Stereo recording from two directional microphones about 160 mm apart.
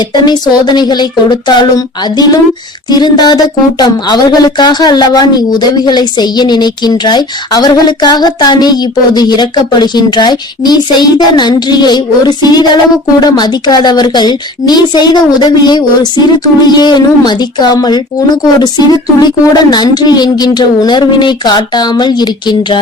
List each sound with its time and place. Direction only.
0.1 s speech: 25° left (ahead or behind)